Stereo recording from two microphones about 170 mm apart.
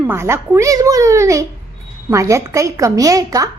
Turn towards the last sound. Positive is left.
turn(degrees=-20)  # may be behind; listen again after turning